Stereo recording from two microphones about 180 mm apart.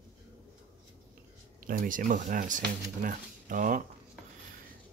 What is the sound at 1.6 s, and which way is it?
Speech, 50° right (ahead or behind).